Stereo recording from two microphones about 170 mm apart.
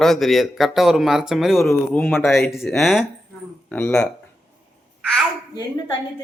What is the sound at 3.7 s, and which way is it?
Speech, 10° left (ahead or behind).